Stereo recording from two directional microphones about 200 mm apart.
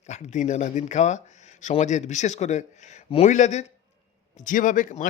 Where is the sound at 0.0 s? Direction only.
35° left (ahead or behind).